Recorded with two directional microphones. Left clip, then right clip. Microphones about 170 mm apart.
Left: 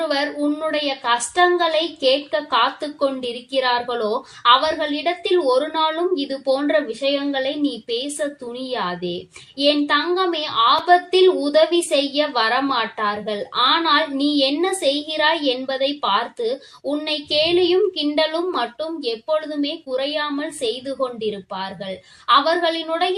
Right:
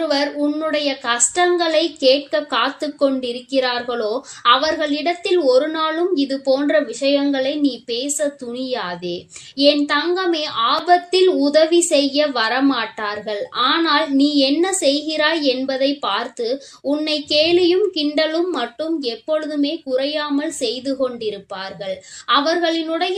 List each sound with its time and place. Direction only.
0.0 s a woman's voice: 30° right (ahead or behind)